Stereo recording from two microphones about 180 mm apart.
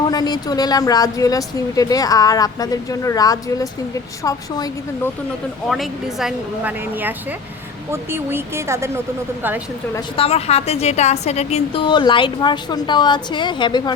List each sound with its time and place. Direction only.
0.1 s a woman's voice: 20° left (ahead or behind)
5.6 s speech: centre (ahead or behind); by 8.9 s 15° right (ahead or behind)
10.2 s a woman's voice: 35° left (ahead or behind)